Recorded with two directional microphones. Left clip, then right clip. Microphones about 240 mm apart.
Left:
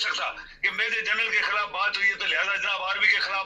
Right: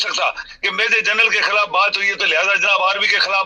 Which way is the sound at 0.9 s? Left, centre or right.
Right.